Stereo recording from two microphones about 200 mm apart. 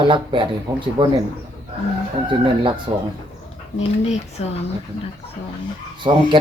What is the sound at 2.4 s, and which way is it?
Speech, 25° right (ahead or behind).